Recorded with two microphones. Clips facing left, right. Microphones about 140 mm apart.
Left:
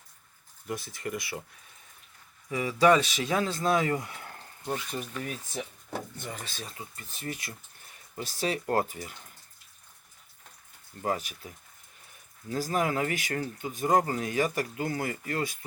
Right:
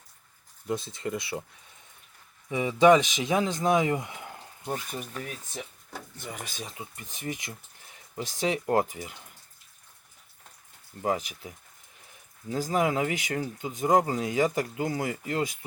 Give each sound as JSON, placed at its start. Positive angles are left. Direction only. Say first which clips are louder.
{"t": 0.7, "sound": "speech", "louder": "right 4 dB", "side_deg": -25}
{"t": 2.5, "sound": "speech", "louder": "right 3 dB", "side_deg": -20}
{"t": 11.0, "sound": "speech", "louder": "right 2 dB", "side_deg": -15}